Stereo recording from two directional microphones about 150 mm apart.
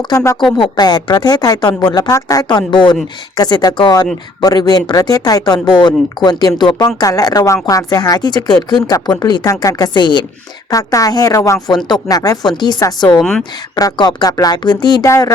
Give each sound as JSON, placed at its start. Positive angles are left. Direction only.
{"t": 0.1, "sound": "speech", "side_deg": 25}